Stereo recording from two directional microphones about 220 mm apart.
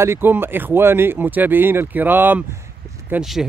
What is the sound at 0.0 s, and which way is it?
Speech, 10° right (ahead or behind).